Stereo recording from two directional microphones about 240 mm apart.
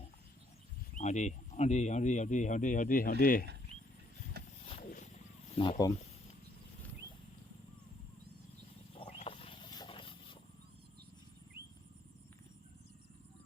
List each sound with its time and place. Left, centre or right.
0.9 s speech: left
4.4 s a sound: right
4.8 s wild animals: left
5.5 s speech: centre
9.0 s wild animals: left